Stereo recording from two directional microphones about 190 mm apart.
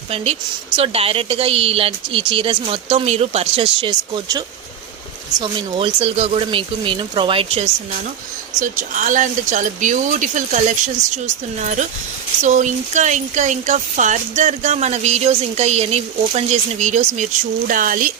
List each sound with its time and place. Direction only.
0.8 s speech: 30° right (ahead or behind)
8.6 s speech: 45° right (ahead or behind)